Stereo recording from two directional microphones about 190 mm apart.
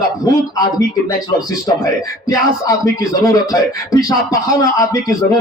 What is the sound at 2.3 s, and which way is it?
Speech, 20° left (ahead or behind).